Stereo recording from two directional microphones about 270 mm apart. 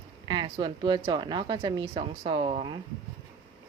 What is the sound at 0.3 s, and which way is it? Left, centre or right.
Speech, centre.